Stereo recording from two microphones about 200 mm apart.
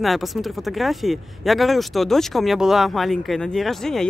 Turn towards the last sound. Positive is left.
turn(degrees=0)  # may be behind; listen again after turning